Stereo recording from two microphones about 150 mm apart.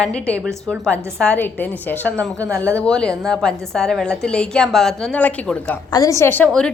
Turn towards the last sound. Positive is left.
turn(degrees=5)  # may be behind; listen again after turning